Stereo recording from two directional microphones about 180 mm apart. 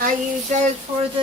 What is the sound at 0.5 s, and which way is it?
Speech, 45° right (ahead or behind).